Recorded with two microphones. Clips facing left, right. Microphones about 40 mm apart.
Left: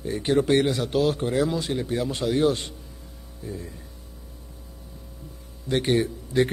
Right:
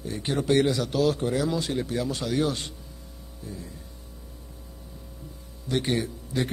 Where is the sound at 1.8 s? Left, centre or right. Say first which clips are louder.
Left 3 dB; left.